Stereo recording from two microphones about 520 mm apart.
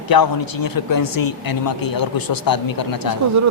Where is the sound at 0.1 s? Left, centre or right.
Left.